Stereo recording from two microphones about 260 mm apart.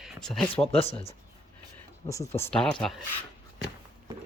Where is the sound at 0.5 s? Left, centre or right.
Left.